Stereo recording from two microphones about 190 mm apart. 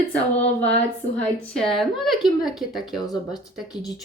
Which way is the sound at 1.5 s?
Centre (ahead or behind).